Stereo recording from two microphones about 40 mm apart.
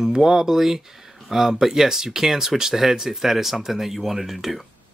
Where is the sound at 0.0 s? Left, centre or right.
Centre.